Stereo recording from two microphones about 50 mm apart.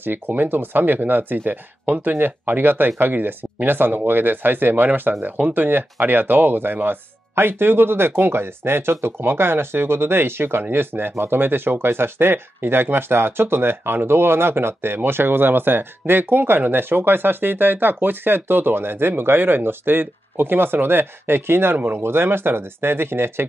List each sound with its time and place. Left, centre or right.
0.0 s speech: right